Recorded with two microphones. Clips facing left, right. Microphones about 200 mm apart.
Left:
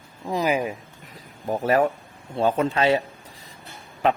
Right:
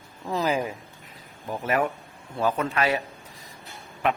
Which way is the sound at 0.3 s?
15° left (ahead or behind).